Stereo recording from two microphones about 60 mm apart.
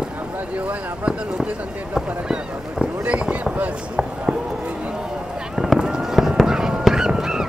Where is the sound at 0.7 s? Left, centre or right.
Centre.